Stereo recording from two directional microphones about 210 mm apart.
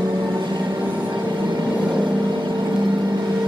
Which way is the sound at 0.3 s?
20° right (ahead or behind).